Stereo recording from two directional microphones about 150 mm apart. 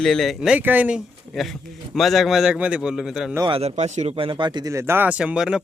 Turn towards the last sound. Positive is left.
turn(degrees=-5)  # may be behind; listen again after turning